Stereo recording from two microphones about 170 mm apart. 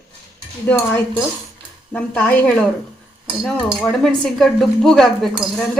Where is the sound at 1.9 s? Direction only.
10° left (ahead or behind).